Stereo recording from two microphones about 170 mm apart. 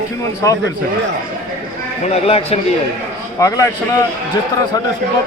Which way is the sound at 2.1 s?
35° left (ahead or behind).